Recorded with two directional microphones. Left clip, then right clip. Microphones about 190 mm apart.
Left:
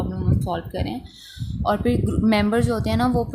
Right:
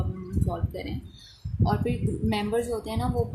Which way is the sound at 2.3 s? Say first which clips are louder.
Left 6 dB; 40° left (ahead or behind).